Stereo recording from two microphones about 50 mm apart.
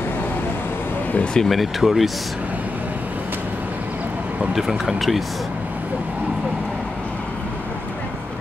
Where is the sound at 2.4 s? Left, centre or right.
Right.